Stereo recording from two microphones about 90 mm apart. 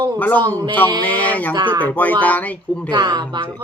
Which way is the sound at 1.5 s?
60° right (ahead or behind).